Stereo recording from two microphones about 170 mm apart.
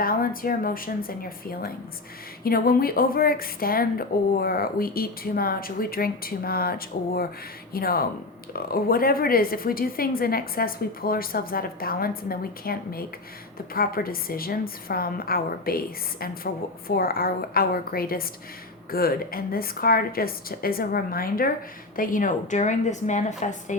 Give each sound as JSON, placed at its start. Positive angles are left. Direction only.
{"t": 0.0, "sound": "speech", "side_deg": 60}
{"t": 16.9, "sound": "a woman's voice", "side_deg": 60}